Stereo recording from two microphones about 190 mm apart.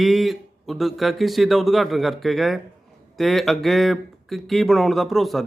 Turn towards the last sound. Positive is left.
turn(degrees=0)  # may be behind; listen again after turning